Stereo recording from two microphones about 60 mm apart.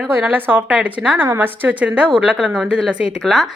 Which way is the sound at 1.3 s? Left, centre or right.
Right.